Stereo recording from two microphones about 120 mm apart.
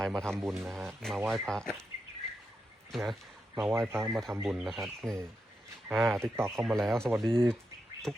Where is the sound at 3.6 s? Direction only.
15° right (ahead or behind).